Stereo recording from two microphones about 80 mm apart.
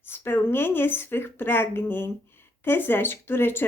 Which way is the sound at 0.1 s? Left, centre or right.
Left.